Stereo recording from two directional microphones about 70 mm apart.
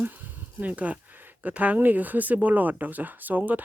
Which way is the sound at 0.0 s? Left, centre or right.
Right.